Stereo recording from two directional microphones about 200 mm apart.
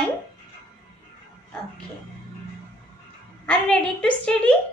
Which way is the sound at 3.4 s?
5° left (ahead or behind).